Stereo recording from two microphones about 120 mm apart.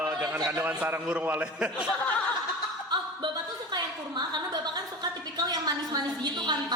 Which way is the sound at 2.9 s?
40° right (ahead or behind).